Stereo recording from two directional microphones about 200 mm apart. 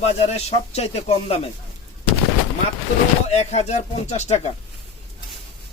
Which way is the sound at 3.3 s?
35° left (ahead or behind).